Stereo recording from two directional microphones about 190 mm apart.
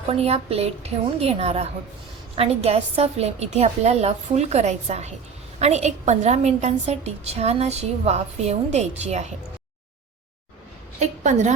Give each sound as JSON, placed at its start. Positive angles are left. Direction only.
{"t": 0.1, "sound": "a woman's voice", "side_deg": -30}
{"t": 11.0, "sound": "a woman's voice", "side_deg": -40}